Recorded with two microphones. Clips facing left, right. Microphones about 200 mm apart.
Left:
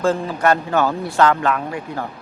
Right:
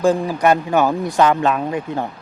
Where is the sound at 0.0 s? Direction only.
15° right (ahead or behind).